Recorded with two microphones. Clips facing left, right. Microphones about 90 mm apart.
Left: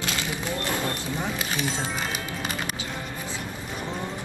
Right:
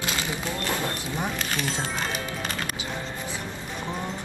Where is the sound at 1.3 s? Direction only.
5° left (ahead or behind).